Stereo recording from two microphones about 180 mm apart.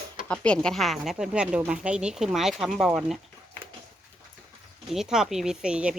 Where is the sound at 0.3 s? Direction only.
5° left (ahead or behind).